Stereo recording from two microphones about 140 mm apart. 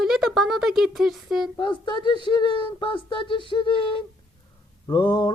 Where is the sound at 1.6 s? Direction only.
35° left (ahead or behind).